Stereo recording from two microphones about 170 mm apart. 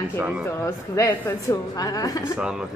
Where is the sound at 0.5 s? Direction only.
15° left (ahead or behind).